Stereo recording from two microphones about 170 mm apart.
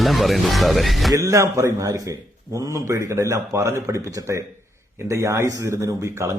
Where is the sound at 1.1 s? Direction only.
20° right (ahead or behind).